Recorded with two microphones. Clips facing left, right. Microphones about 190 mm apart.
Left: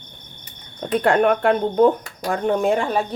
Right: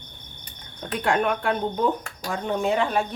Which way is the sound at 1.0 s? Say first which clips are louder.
Left 6 dB; 60° left (ahead or behind).